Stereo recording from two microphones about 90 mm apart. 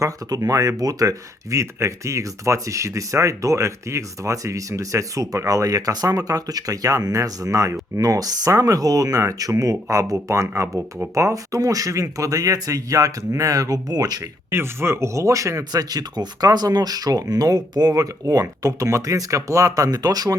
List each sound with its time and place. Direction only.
0.0 s speech: 40° right (ahead or behind)
11.1 s speech: 35° right (ahead or behind)
14.5 s speech: 30° right (ahead or behind); by 20.3 s 45° right (ahead or behind)